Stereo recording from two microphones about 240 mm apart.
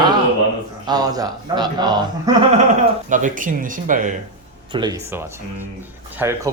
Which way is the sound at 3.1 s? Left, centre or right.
Right.